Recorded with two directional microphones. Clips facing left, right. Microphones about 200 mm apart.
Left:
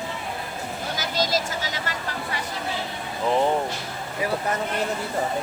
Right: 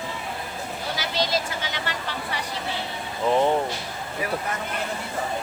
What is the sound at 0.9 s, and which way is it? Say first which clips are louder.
Speech: left 1 dB; 45° left (ahead or behind).